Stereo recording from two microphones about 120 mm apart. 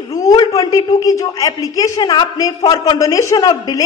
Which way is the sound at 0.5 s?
30° left (ahead or behind).